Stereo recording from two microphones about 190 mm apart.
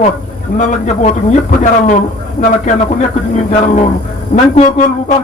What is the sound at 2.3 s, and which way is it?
A man's voice, 40° left (ahead or behind).